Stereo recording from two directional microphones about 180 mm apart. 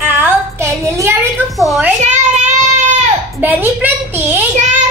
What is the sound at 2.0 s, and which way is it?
Child singing, 40° right (ahead or behind).